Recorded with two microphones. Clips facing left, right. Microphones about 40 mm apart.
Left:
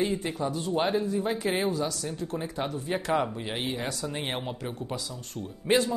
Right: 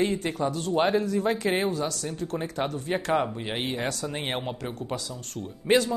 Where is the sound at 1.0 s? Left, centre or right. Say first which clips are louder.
Right 3 dB; right.